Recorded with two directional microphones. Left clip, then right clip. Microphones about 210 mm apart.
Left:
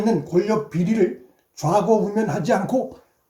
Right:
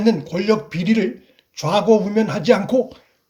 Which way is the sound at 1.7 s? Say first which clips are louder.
Right 3 dB; 25° right (ahead or behind).